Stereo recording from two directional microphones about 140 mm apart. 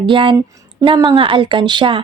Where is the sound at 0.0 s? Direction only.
35° right (ahead or behind).